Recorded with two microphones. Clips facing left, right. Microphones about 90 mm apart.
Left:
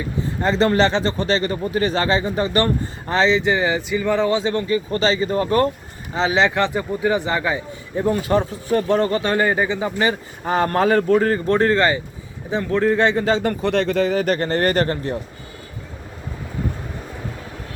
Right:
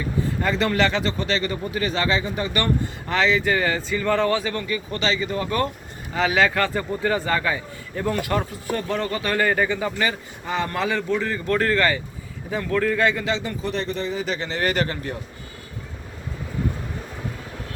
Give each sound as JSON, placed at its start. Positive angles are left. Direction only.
{"t": 0.4, "sound": "a man's voice", "side_deg": 30}
{"t": 6.1, "sound": "a man's voice", "side_deg": 25}
{"t": 10.4, "sound": "a man's voice", "side_deg": 45}
{"t": 11.4, "sound": "a man's voice", "side_deg": 30}
{"t": 13.4, "sound": "speech", "side_deg": 60}
{"t": 14.3, "sound": "speech", "side_deg": 50}